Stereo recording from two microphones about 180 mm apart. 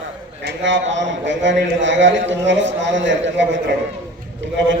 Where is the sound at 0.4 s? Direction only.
85° right.